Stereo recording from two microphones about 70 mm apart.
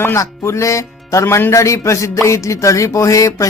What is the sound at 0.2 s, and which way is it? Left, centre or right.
Speech, left.